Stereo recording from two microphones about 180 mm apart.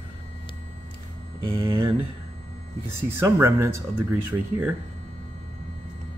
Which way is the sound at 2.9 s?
15° right (ahead or behind).